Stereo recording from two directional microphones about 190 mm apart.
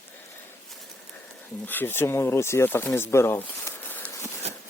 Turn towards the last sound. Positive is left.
turn(degrees=15)  # may be behind; listen again after turning